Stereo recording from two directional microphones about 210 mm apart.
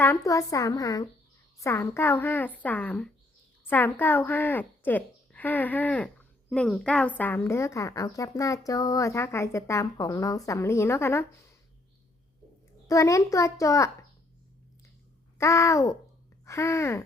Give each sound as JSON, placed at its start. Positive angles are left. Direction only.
{"t": 0.0, "sound": "a woman's voice", "side_deg": 10}
{"t": 12.9, "sound": "a woman's voice", "side_deg": 15}
{"t": 15.4, "sound": "a woman's voice", "side_deg": 15}